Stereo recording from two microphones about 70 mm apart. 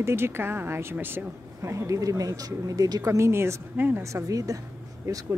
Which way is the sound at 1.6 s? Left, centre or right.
Right.